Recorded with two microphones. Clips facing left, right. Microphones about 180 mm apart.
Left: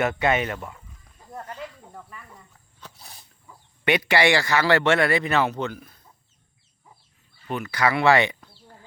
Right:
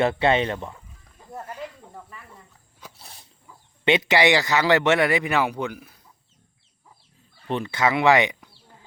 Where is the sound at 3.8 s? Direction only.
20° right (ahead or behind).